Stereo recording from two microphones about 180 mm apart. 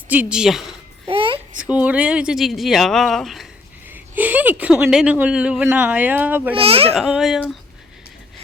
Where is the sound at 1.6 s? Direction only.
5° right (ahead or behind).